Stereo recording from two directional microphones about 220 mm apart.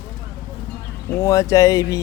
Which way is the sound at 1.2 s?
15° left (ahead or behind).